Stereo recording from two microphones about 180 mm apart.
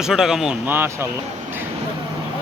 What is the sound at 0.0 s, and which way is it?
Speech, 5° right (ahead or behind).